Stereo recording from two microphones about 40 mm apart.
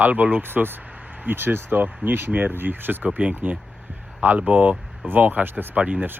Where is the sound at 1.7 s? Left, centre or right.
Right.